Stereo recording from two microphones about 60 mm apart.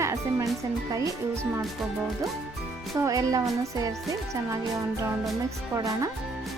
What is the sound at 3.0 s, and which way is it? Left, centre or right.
Speech, right.